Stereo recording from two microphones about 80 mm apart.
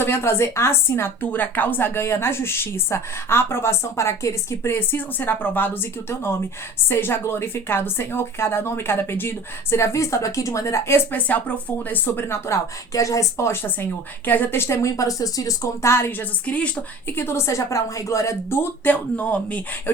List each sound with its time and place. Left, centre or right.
0.0 s a woman's voice: left
12.9 s a woman's voice: left; by 17.2 s centre
17.2 s a woman's voice: left